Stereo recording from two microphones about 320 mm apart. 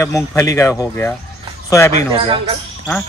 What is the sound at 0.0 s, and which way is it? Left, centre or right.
Speech, centre.